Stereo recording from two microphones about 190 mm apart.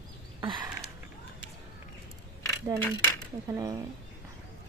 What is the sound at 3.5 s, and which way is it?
Speech, 20° right (ahead or behind).